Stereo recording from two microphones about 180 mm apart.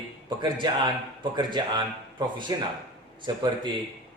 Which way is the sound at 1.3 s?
25° right (ahead or behind).